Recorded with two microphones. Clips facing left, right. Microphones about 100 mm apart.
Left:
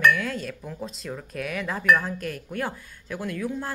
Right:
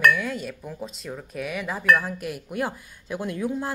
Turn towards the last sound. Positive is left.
turn(degrees=-20)  # may be behind; listen again after turning